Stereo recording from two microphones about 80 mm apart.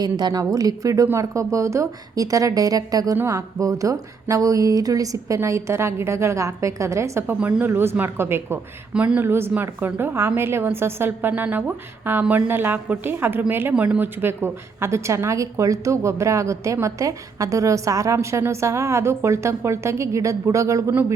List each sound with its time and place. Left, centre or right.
0.0 s a woman's voice: right
3.2 s speech: right
7.6 s a woman's voice: right
8.9 s speech: centre
9.2 s a woman's voice: right